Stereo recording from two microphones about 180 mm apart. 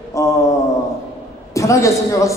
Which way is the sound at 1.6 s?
15° left (ahead or behind).